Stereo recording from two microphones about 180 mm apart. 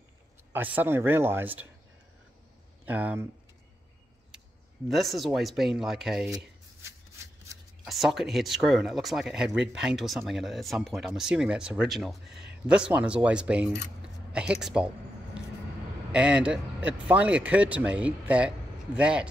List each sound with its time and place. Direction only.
0.5 s speech: 10° right (ahead or behind)
2.8 s speech: 10° right (ahead or behind)
4.8 s speech: centre (ahead or behind)
7.2 s shuffling cards: 15° right (ahead or behind)
7.8 s speech: centre (ahead or behind)
16.1 s speech: 5° right (ahead or behind)